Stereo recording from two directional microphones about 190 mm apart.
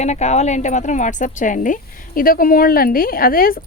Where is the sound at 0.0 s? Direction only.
35° left (ahead or behind).